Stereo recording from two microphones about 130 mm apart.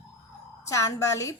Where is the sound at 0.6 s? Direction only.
25° left (ahead or behind).